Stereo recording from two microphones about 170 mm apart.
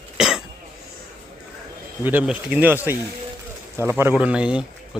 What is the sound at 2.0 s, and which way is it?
Speech, 10° right (ahead or behind).